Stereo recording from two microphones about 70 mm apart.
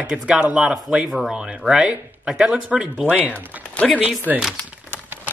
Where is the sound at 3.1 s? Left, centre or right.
Centre.